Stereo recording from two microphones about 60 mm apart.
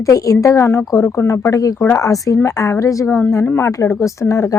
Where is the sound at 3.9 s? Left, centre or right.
Left.